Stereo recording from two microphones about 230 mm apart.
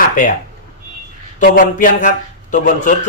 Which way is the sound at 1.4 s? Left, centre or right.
Left.